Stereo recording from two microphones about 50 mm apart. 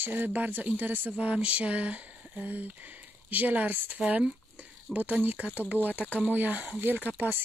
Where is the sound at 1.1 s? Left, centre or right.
Right.